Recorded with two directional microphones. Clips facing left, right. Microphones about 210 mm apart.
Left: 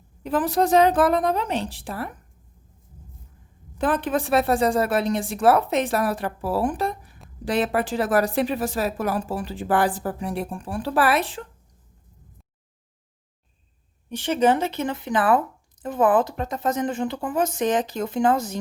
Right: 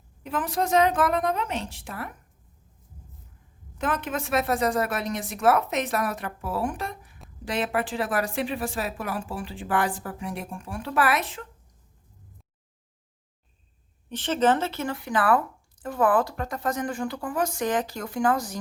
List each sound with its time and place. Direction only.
0.2 s speech: 35° left (ahead or behind)
3.8 s speech: 35° left (ahead or behind)
14.1 s speech: 10° left (ahead or behind)